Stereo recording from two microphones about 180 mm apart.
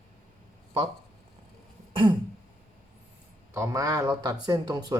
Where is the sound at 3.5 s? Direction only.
15° right (ahead or behind).